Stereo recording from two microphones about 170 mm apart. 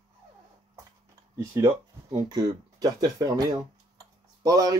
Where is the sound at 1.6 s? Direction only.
25° right (ahead or behind).